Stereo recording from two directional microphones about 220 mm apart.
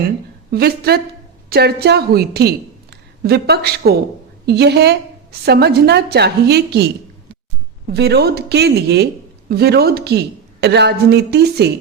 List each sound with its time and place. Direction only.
0.5 s a woman's voice: 45° right (ahead or behind)
7.9 s a woman's voice: 50° right (ahead or behind)